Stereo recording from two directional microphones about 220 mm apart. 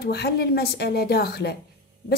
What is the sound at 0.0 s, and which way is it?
A woman's voice, 45° left (ahead or behind).